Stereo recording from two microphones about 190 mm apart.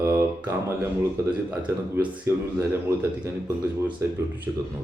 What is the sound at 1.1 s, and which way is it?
Speech, 10° right (ahead or behind).